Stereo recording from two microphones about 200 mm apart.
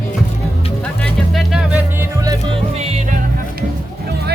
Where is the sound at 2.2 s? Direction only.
25° right (ahead or behind).